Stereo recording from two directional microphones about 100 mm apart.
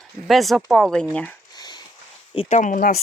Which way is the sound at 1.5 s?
45° left (ahead or behind).